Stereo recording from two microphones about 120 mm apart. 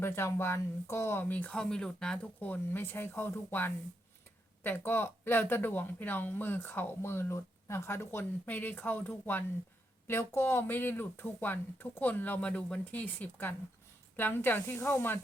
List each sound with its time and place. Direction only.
0.0 s speech: 20° left (ahead or behind)